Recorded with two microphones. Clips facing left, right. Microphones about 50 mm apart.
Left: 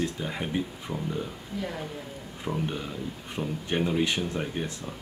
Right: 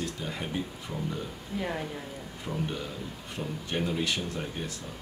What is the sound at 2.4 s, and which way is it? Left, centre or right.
Speech, centre.